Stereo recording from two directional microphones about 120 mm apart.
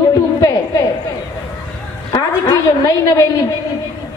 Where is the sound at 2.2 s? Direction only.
30° left (ahead or behind).